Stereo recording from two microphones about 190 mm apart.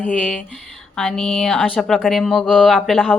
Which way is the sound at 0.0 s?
5° left (ahead or behind).